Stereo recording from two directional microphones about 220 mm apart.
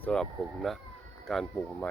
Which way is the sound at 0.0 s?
5° left (ahead or behind).